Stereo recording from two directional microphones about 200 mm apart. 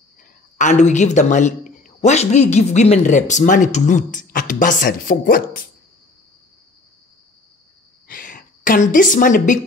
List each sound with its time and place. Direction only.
0.6 s a man's voice: 35° left (ahead or behind)
8.1 s a woman's voice: 45° left (ahead or behind)